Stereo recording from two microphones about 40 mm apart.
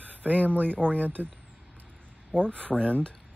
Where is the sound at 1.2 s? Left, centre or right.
Centre.